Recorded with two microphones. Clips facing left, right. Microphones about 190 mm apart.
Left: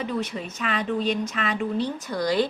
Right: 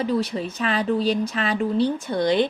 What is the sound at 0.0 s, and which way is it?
Speech, 35° right (ahead or behind).